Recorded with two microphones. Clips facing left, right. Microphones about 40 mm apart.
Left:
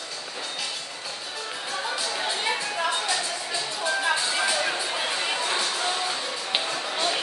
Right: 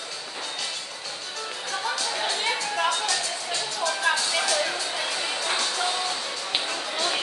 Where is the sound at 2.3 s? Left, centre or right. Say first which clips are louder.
Even; centre.